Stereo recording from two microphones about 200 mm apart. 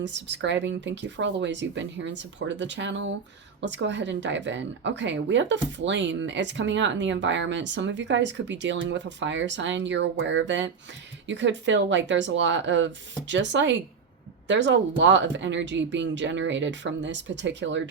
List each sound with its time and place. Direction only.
0.0 s a woman's voice: 65° right (ahead or behind)